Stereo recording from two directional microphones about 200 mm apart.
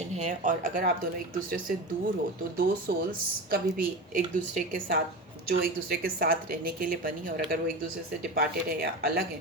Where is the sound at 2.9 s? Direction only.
50° right (ahead or behind).